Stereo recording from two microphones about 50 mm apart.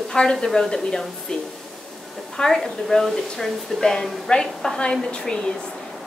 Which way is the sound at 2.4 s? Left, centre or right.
Centre.